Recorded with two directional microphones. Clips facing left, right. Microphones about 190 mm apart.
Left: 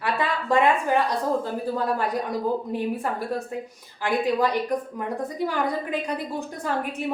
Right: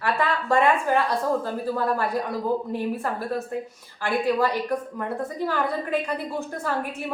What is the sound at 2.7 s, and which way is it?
A woman's voice, 15° left (ahead or behind).